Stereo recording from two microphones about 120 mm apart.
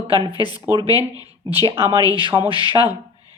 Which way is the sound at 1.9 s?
35° left (ahead or behind).